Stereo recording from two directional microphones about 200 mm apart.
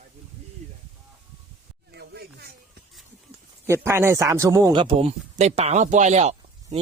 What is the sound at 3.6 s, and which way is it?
Speech, 15° right (ahead or behind).